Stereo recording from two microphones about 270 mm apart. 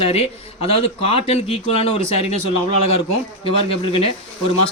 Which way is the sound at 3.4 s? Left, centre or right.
Left.